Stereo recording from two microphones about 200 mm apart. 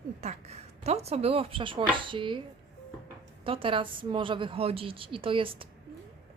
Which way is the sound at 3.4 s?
25° right (ahead or behind).